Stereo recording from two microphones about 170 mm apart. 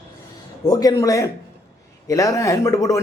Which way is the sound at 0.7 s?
20° left (ahead or behind).